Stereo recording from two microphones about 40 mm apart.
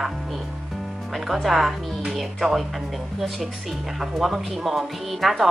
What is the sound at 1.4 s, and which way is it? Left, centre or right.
A woman's voice, centre.